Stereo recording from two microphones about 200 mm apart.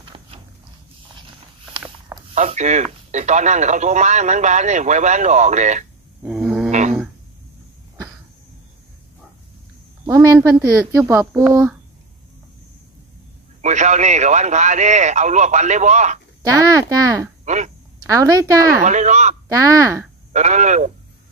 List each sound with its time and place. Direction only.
0.0 s dog: 25° right (ahead or behind)
2.3 s speech: 35° right (ahead or behind)
6.2 s a sound: 5° right (ahead or behind)
6.7 s a sound: 35° right (ahead or behind)
10.0 s a sound: 15° right (ahead or behind)
11.1 s speech: 15° right (ahead or behind)
13.6 s speech: 35° right (ahead or behind)
16.4 s speech: 15° right (ahead or behind)
18.8 s speech: 35° right (ahead or behind)
19.5 s speech: 15° right (ahead or behind)
20.3 s speech: 35° right (ahead or behind)